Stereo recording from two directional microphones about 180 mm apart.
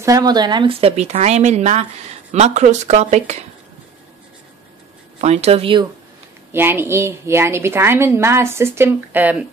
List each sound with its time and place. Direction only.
0.0 s speech: 20° right (ahead or behind); by 3.4 s 40° right (ahead or behind)
5.2 s speech: 35° right (ahead or behind)
6.5 s a woman's voice: 10° right (ahead or behind)